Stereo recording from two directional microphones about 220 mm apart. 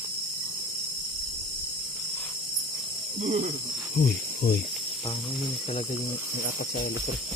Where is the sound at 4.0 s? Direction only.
45° left (ahead or behind).